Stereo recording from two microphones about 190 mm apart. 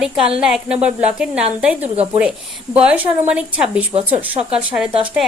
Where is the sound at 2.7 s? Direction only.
5° right (ahead or behind).